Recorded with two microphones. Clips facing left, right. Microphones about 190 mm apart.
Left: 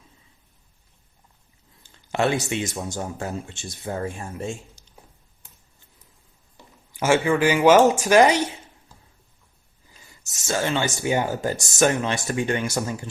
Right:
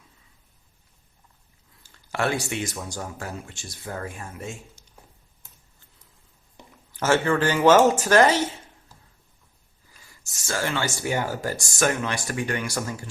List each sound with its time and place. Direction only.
1.8 s speech: 20° left (ahead or behind)
6.9 s speech: 10° left (ahead or behind)
9.9 s speech: 20° left (ahead or behind)